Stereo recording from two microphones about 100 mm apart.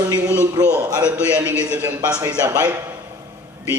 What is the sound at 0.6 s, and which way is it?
Speech, 40° right (ahead or behind).